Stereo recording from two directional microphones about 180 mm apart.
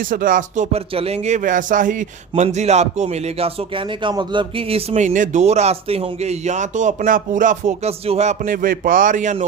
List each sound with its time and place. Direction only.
0.0 s speech: 50° right (ahead or behind)